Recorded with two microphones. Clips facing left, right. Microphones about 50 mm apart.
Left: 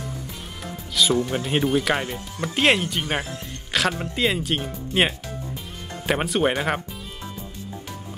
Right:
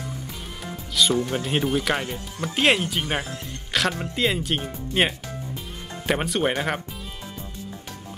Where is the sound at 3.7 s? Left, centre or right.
Centre.